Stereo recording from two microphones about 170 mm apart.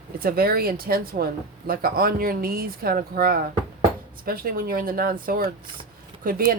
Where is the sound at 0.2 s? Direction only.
60° right (ahead or behind).